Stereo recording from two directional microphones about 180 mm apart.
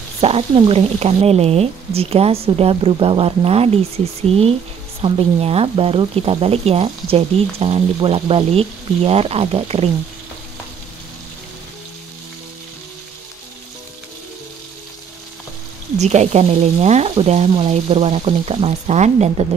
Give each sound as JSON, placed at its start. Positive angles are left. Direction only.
{"t": 0.2, "sound": "speech", "side_deg": -30}
{"t": 16.0, "sound": "speech", "side_deg": -40}